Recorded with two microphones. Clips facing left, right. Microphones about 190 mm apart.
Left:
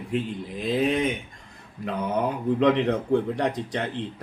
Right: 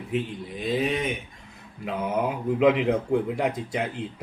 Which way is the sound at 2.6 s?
5° right (ahead or behind).